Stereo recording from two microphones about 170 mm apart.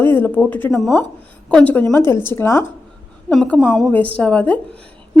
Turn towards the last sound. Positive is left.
turn(degrees=10)  # may be behind; listen again after turning